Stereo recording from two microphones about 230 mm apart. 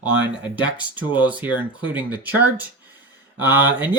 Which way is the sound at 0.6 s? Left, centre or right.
Centre.